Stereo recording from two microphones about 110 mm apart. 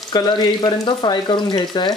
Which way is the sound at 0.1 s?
40° left (ahead or behind).